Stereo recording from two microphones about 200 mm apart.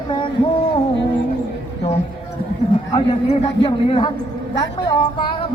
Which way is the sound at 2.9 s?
30° left (ahead or behind).